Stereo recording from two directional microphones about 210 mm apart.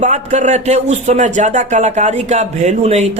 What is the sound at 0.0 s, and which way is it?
Speech, 35° right (ahead or behind).